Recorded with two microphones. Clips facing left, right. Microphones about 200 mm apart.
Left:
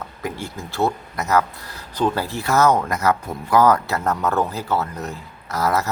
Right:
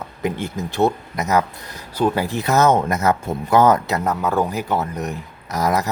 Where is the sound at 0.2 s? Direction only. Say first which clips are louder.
Right 6 dB; 20° right (ahead or behind).